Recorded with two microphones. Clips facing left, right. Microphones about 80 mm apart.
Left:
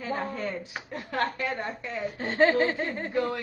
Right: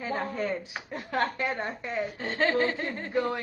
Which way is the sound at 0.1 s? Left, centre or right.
Centre.